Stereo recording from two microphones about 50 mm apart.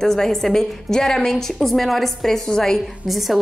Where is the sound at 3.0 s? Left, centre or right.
Centre.